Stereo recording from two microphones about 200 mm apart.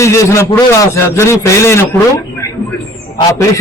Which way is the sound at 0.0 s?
15° left (ahead or behind).